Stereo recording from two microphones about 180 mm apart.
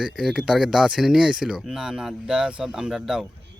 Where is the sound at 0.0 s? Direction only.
5° right (ahead or behind).